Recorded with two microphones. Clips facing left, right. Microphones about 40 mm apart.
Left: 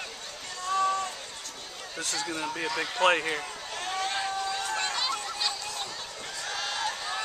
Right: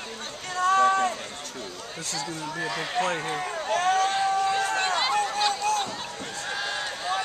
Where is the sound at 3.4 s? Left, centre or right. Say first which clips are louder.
Right 10 dB; right.